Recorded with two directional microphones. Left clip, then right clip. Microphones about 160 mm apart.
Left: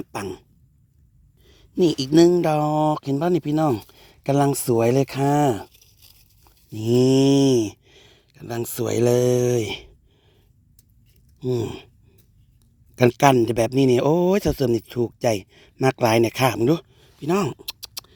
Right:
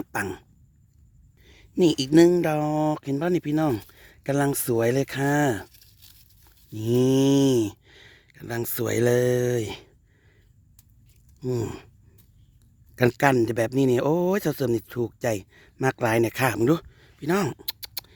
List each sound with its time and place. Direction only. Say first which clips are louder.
0.1 s cough: right 2 dB; centre (ahead or behind)
1.4 s speech: left 2 dB; centre (ahead or behind); by 5.6 s 20° left (ahead or behind)
5.6 s tearing: left 2 dB; 5° right (ahead or behind)
6.7 s speech: left 4 dB; 20° left (ahead or behind)
11.3 s speech: left 4 dB; 10° left (ahead or behind)
13.0 s speech: left 4 dB; 15° left (ahead or behind)
16.6 s a sound: left 2 dB; 5° left (ahead or behind)